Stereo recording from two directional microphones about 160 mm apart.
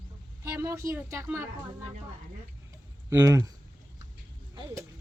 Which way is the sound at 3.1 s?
20° right (ahead or behind).